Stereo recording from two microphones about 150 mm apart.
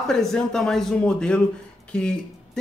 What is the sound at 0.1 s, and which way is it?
Speech, 5° left (ahead or behind).